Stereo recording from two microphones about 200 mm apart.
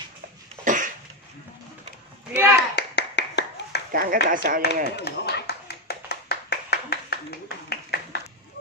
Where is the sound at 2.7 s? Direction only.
60° left (ahead or behind).